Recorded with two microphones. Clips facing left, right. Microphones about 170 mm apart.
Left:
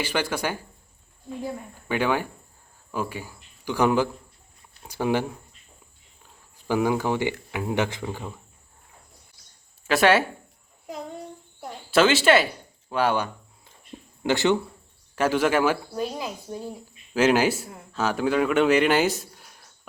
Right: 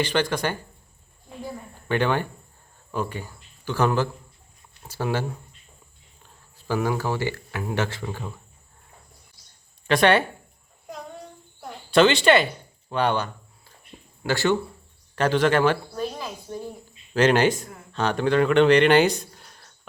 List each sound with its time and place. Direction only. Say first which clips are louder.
0.0 s speech: right 3 dB; 10° left (ahead or behind)
1.9 s speech: right 1 dB; 10° left (ahead or behind)
6.7 s speech: left 2 dB; 15° left (ahead or behind)
9.8 s speech: even; 5° left (ahead or behind)
11.6 s speech: right 2 dB; 5° left (ahead or behind)
14.3 s a man's voice: left 1 dB; 20° left (ahead or behind)